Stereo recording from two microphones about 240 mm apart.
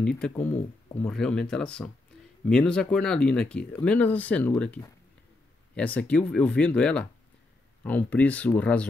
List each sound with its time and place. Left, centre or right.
0.0 s speech: centre